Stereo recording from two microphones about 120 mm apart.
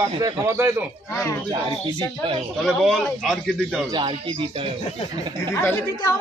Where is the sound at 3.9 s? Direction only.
45° right (ahead or behind).